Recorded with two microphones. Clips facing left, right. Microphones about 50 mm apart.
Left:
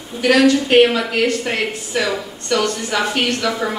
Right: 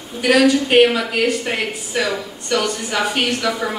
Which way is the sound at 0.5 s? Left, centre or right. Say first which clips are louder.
Left 1 dB; centre.